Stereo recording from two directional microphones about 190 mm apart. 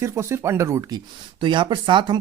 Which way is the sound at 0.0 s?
15° right (ahead or behind).